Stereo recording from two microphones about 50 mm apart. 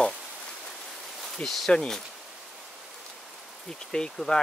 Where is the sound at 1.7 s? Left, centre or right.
Centre.